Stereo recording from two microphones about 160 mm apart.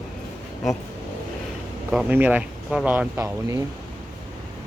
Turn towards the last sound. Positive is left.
turn(degrees=-15)  # may be behind; listen again after turning